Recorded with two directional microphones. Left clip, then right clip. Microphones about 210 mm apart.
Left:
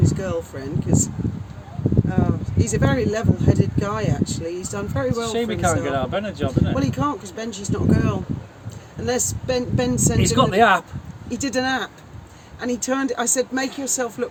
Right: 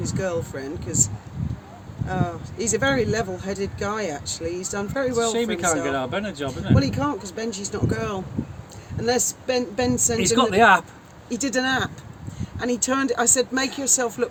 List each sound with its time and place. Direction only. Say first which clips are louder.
0.0 s speech: left 1 dB; 15° right (ahead or behind)
2.0 s speech: left 3 dB; 15° right (ahead or behind)
5.1 s speech: right 1 dB; centre (ahead or behind)
6.7 s speech: left 1 dB; 15° right (ahead or behind)
10.2 s speech: left 1 dB; 5° left (ahead or behind)
11.3 s speech: left 1 dB; 15° right (ahead or behind)